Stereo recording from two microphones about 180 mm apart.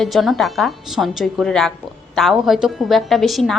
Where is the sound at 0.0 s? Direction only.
Centre (ahead or behind).